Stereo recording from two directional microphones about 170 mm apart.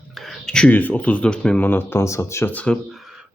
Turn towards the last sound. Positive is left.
turn(degrees=0)  # may be behind; listen again after turning